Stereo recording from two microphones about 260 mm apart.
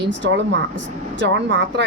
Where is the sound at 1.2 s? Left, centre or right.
Right.